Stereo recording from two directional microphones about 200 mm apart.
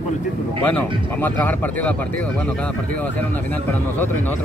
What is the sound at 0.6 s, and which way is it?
Speech, 10° left (ahead or behind).